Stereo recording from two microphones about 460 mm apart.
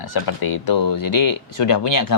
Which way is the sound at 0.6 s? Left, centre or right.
Left.